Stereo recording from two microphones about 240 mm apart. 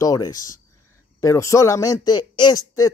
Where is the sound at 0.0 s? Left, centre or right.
Centre.